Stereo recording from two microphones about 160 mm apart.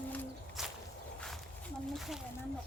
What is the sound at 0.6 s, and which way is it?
Walk, centre (ahead or behind).